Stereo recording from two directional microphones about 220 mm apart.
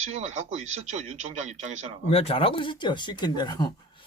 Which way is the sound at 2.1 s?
25° left (ahead or behind).